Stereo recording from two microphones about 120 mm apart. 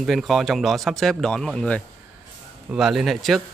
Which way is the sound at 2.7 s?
5° right (ahead or behind).